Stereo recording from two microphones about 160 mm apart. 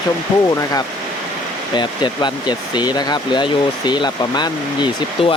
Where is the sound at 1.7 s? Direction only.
30° left (ahead or behind).